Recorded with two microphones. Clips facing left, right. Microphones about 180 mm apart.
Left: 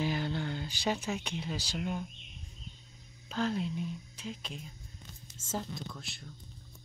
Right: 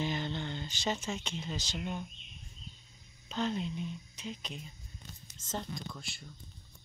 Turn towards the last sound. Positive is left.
turn(degrees=0)  # may be behind; listen again after turning